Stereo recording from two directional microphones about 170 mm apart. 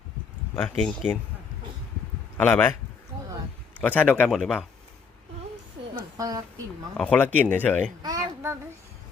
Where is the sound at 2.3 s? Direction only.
10° left (ahead or behind).